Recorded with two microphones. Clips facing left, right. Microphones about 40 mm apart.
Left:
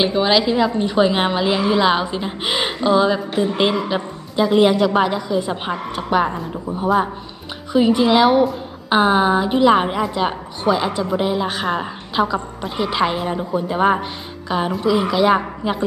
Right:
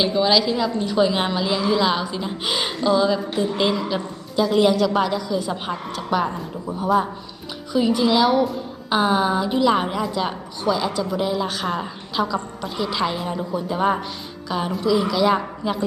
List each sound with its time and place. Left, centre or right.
0.0 s a woman's voice: left
7.7 s a woman's voice: left